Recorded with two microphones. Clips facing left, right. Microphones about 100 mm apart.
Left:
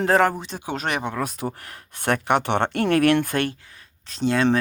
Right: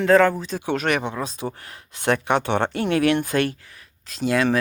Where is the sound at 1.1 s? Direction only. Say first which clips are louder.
Left 2 dB; 65° left (ahead or behind).